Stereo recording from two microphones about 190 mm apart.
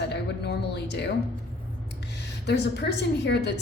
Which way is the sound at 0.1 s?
60° left (ahead or behind).